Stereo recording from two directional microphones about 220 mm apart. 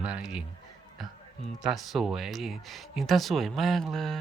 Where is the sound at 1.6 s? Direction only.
Centre (ahead or behind).